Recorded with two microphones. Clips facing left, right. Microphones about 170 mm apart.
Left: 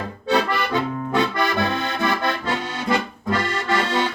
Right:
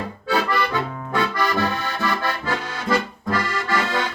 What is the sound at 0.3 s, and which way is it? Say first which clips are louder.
Accordion: left 1 dB; 25° left (ahead or behind).